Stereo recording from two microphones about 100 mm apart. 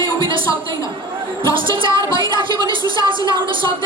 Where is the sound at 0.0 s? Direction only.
55° right (ahead or behind).